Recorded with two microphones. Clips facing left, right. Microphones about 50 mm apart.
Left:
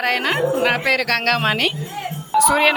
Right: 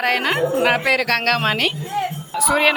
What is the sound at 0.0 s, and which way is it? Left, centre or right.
Speech, centre.